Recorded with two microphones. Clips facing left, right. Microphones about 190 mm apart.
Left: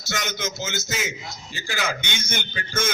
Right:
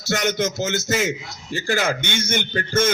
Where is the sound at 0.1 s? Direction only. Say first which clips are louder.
Right 8 dB; 60° right (ahead or behind).